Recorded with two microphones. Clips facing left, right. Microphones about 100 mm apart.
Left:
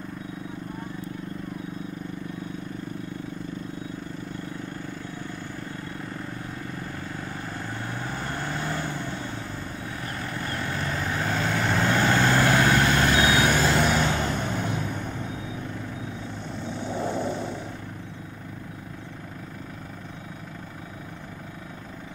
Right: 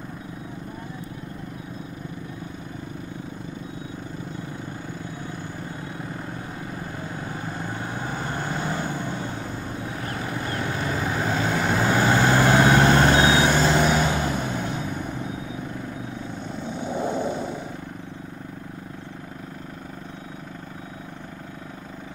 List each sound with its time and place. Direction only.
6.7 s vehicle: 15° right (ahead or behind)
13.7 s vehicle: 5° right (ahead or behind)
16.5 s vehicle: 5° right (ahead or behind)